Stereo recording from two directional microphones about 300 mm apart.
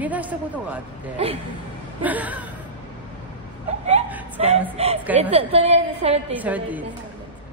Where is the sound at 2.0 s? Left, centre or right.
Centre.